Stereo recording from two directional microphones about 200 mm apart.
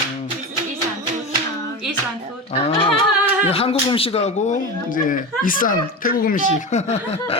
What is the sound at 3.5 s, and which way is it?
Speech, 30° left (ahead or behind).